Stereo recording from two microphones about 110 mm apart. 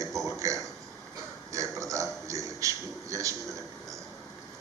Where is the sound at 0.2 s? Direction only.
30° right (ahead or behind).